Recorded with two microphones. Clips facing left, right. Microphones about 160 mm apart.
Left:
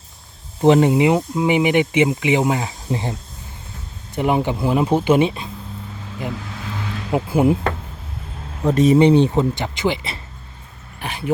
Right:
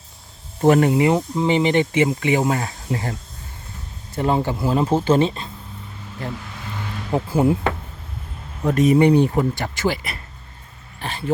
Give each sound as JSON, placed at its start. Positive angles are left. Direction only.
{"t": 0.6, "sound": "speech", "side_deg": 20}
{"t": 8.6, "sound": "speech", "side_deg": 25}